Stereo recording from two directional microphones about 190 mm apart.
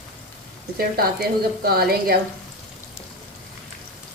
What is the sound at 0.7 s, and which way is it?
A woman's voice, 50° right (ahead or behind).